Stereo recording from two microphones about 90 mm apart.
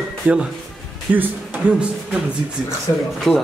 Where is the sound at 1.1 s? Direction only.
15° right (ahead or behind).